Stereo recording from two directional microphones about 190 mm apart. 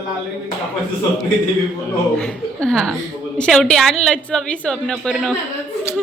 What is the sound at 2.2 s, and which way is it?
A woman's voice, centre (ahead or behind).